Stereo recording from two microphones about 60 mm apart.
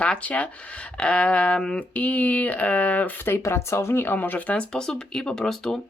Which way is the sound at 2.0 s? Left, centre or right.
Left.